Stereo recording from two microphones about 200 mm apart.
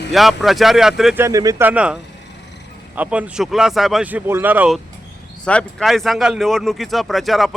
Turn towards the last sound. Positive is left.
turn(degrees=0)  # may be behind; listen again after turning